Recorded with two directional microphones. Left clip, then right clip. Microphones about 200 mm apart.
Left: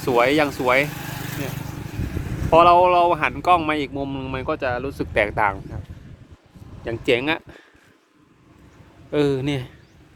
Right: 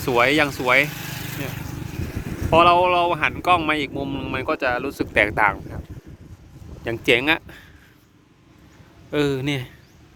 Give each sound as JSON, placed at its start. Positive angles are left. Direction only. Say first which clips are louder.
{"t": 0.0, "sound": "speech", "louder": "even", "side_deg": 0}
{"t": 0.9, "sound": "vehicle", "louder": "even", "side_deg": 45}
{"t": 1.7, "sound": "vehicle", "louder": "even", "side_deg": -20}
{"t": 2.5, "sound": "speech", "louder": "left 2 dB", "side_deg": 5}
{"t": 5.1, "sound": "speech", "louder": "right 2 dB", "side_deg": 0}
{"t": 6.8, "sound": "speech", "louder": "right 2 dB", "side_deg": -10}
{"t": 9.0, "sound": "speech", "louder": "left 1 dB", "side_deg": 0}